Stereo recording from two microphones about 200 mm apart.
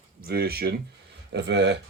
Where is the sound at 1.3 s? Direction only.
60° right (ahead or behind).